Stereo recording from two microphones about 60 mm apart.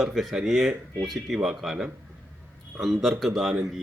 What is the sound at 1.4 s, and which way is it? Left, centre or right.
A man's voice, centre.